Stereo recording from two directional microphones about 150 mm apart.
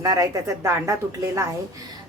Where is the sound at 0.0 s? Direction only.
25° right (ahead or behind).